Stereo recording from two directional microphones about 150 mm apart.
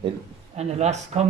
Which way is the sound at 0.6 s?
45° right (ahead or behind).